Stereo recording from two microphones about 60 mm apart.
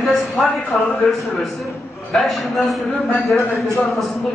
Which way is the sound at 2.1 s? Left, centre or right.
Centre.